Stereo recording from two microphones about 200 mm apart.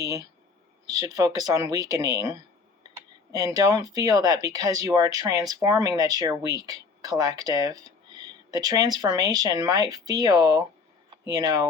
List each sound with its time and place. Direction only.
0.0 s speech: 20° right (ahead or behind)